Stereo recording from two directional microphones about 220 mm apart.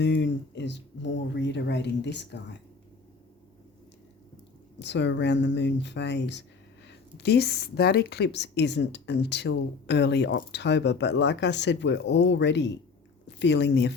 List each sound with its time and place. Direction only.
0.0 s speech: 50° left (ahead or behind)
4.8 s speech: 50° left (ahead or behind)